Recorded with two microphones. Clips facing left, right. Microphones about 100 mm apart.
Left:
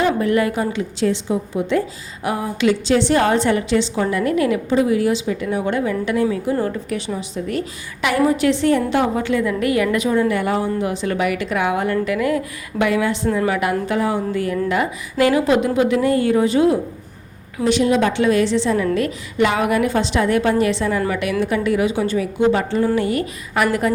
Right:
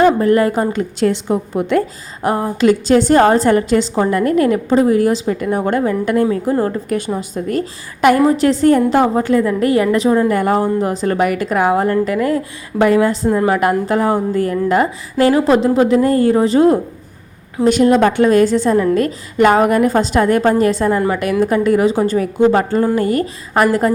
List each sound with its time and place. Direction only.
0.0 s a woman's voice: 40° right (ahead or behind); by 1.8 s 55° right (ahead or behind)
2.2 s a woman's voice: 40° right (ahead or behind)